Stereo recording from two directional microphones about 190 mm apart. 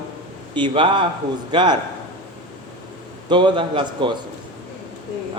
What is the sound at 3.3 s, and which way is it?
Speech, 25° right (ahead or behind).